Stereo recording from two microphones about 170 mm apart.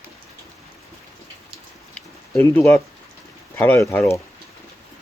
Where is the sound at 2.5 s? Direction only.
15° left (ahead or behind).